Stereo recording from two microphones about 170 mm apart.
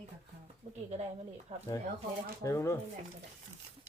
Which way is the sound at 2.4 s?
15° left (ahead or behind).